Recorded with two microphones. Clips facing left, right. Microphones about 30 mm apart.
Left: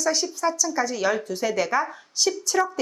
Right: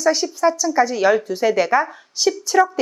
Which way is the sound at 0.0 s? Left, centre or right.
Centre.